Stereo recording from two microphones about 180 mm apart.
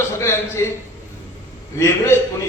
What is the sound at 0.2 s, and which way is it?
Speech, 15° left (ahead or behind).